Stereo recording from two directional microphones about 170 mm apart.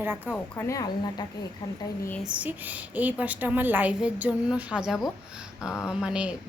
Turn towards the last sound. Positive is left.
turn(degrees=-5)  # may be behind; listen again after turning